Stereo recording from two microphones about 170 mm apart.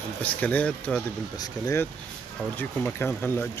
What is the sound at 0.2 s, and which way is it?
Speech, 10° left (ahead or behind).